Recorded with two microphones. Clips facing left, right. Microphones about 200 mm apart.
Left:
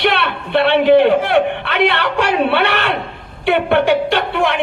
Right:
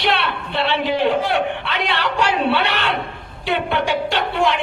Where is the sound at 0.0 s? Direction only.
60° left (ahead or behind).